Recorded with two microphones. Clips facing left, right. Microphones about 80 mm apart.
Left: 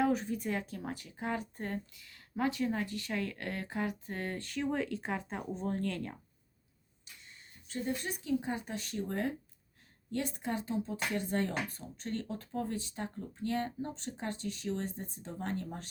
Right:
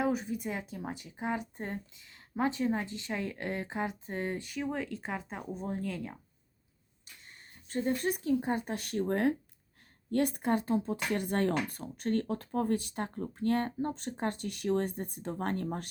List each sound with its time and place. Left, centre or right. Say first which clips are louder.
0.0 s speech: even; centre
7.0 s speech: right 2 dB; right